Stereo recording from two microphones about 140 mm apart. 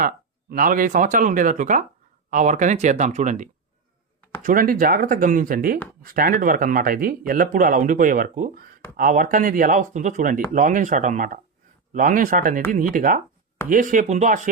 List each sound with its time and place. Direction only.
0.5 s speech: 90° right; by 3.5 s 65° right (ahead or behind)
4.4 s speech: 85° right; by 14.5 s 65° right (ahead or behind)